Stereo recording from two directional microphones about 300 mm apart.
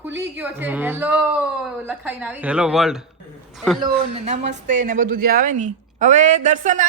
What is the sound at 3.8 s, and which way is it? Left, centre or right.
A woman's voice, centre.